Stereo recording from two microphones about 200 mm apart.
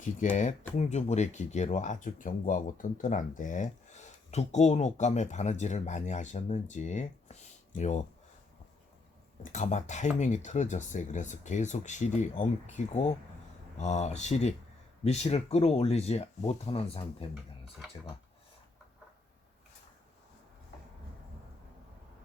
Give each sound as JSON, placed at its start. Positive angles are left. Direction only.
{"t": 0.0, "sound": "speech", "side_deg": 40}
{"t": 9.4, "sound": "speech", "side_deg": 35}